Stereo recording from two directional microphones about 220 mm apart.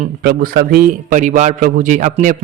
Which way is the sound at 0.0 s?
45° right (ahead or behind).